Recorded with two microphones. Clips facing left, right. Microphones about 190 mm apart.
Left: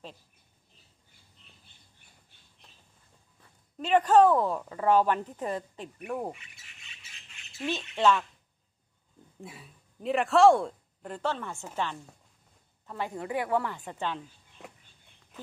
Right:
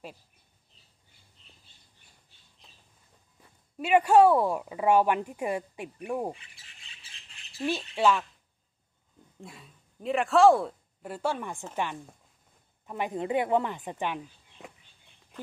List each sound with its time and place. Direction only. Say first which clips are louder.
3.3 s a woman's voice: right 2 dB; 10° right (ahead or behind)
6.3 s bird: even; 30° right (ahead or behind)
7.9 s a woman's voice: left 1 dB; 10° right (ahead or behind)
9.4 s a woman's voice: left 1 dB; centre (ahead or behind); by 14.2 s 15° right (ahead or behind)
14.6 s a sound: right 1 dB; centre (ahead or behind)